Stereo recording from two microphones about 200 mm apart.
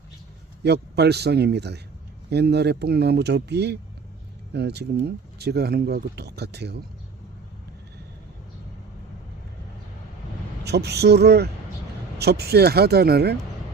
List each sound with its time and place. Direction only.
0.6 s speech: 55° right (ahead or behind)
10.6 s speech: 55° right (ahead or behind)